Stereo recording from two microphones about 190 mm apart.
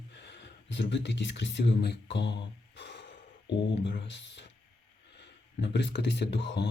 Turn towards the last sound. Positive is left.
turn(degrees=65)  # may be behind; listen again after turning